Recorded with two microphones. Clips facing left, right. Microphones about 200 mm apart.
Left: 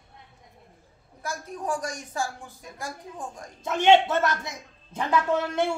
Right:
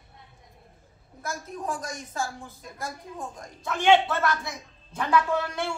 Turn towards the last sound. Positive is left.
turn(degrees=20)  # may be behind; listen again after turning